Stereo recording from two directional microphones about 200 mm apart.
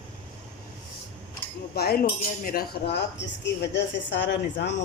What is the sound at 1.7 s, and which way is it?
Speech, 50° left (ahead or behind).